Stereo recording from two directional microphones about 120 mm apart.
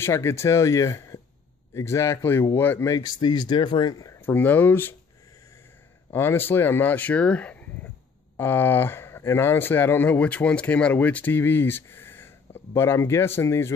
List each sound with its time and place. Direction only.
0.0 s speech: 20° left (ahead or behind)
2.9 s speech: 35° left (ahead or behind)
4.3 s speech: 15° left (ahead or behind)
6.1 s speech: 20° left (ahead or behind)